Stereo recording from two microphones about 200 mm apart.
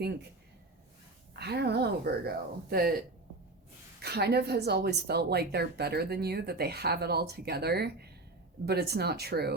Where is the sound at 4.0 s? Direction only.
55° right (ahead or behind).